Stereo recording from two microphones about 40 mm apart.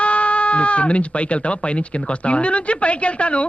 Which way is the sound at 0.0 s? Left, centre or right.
Left.